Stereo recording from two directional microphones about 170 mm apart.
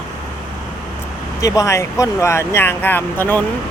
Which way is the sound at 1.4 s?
20° left (ahead or behind).